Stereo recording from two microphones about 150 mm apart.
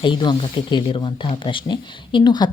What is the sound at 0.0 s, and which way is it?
Speech, 30° left (ahead or behind).